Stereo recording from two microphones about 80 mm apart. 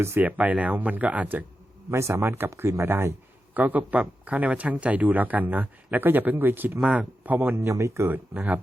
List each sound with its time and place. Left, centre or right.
0.0 s speech: right
0.3 s speech: centre
1.9 s speech: right
7.5 s speech: right
8.3 s speech: right